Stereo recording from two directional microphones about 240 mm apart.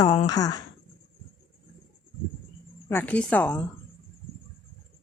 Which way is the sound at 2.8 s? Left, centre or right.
Centre.